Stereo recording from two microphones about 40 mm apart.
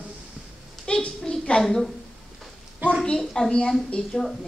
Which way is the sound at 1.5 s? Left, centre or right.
Centre.